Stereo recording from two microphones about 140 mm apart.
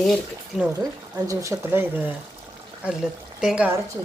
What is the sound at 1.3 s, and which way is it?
Speech, 20° right (ahead or behind).